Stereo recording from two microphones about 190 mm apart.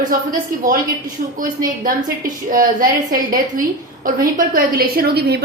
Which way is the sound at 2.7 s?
45° right (ahead or behind).